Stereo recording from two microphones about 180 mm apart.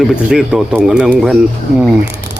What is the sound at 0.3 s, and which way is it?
Speech, 5° right (ahead or behind).